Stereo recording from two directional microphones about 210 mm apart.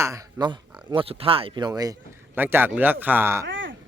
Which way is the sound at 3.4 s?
60° right (ahead or behind).